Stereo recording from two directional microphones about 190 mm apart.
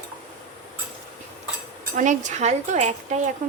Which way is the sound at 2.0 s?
40° right (ahead or behind).